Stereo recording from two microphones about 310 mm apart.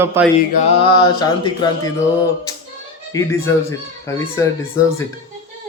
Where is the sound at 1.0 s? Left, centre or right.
Centre.